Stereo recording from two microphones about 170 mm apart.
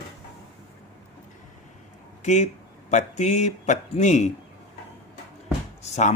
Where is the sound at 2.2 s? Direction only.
45° left (ahead or behind).